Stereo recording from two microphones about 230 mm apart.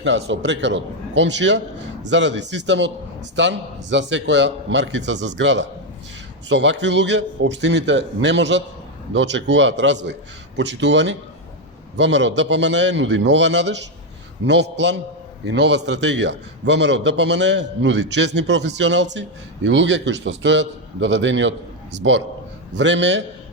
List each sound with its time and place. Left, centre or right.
0.0 s a man's voice: right